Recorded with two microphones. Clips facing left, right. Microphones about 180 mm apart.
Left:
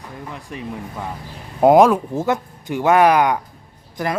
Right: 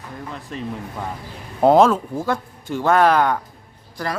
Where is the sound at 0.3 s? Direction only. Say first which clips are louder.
Right 1 dB; 15° left (ahead or behind).